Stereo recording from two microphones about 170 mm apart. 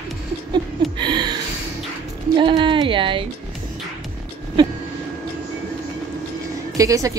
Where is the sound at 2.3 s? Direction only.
30° right (ahead or behind).